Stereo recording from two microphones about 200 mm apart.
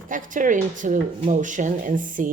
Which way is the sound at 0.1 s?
40° right (ahead or behind).